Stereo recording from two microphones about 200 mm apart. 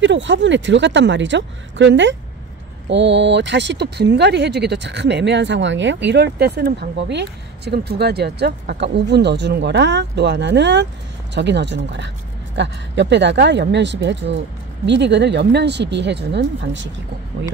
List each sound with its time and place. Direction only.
0.0 s speech: 65° right (ahead or behind)